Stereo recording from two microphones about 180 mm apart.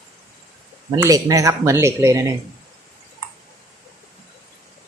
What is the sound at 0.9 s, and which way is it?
Speech, 20° right (ahead or behind).